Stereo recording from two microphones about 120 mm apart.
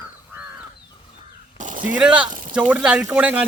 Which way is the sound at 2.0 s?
10° right (ahead or behind).